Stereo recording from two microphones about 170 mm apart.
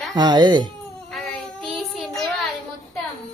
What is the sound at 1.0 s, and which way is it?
Child singing, 5° left (ahead or behind).